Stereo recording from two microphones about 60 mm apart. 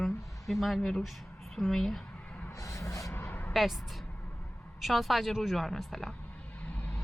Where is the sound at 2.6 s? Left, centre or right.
Left.